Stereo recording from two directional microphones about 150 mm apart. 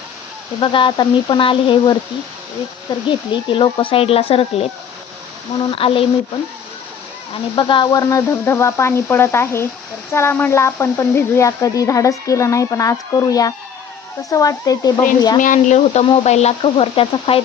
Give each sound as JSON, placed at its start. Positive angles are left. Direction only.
{"t": 0.6, "sound": "speech", "side_deg": 35}
{"t": 3.5, "sound": "speech", "side_deg": 35}
{"t": 5.7, "sound": "speech", "side_deg": 35}
{"t": 7.5, "sound": "a woman's voice", "side_deg": 30}
{"t": 15.4, "sound": "speech", "side_deg": 60}